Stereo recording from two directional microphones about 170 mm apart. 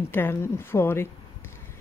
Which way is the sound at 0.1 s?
15° left (ahead or behind).